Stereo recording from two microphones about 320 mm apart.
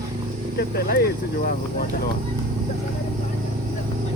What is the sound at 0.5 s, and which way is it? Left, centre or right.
Speech, left.